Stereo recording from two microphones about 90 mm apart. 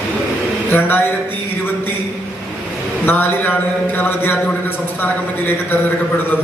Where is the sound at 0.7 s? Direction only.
20° left (ahead or behind).